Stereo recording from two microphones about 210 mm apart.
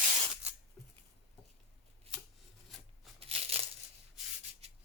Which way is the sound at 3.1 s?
30° right (ahead or behind).